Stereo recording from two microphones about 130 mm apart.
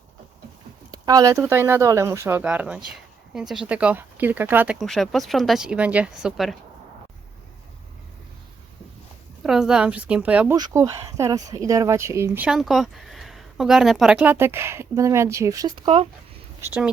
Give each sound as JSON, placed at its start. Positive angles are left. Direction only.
{"t": 0.9, "sound": "speech", "side_deg": -30}
{"t": 4.8, "sound": "speech", "side_deg": 0}
{"t": 9.4, "sound": "speech", "side_deg": -5}
{"t": 10.5, "sound": "speech", "side_deg": -25}
{"t": 12.5, "sound": "speech", "side_deg": 0}